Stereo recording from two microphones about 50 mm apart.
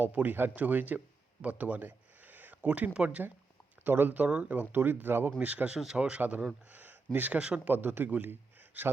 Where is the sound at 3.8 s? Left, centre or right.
Right.